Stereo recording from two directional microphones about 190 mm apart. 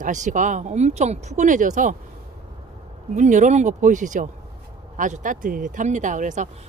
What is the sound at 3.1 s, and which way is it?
A woman's voice, 40° right (ahead or behind).